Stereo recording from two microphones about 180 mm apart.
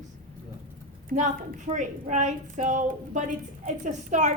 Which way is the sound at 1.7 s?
40° right (ahead or behind).